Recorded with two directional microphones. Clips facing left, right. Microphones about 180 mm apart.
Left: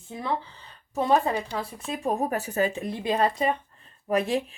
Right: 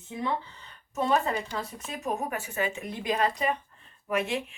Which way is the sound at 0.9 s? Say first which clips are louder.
Left 3 dB; 30° left (ahead or behind).